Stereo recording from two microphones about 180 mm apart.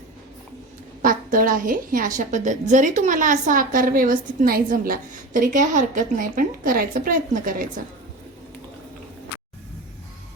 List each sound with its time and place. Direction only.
1.0 s a woman's voice: 50° right (ahead or behind)